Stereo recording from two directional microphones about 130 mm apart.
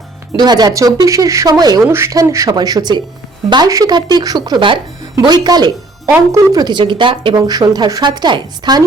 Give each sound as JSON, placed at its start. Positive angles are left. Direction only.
{"t": 0.3, "sound": "speech", "side_deg": -30}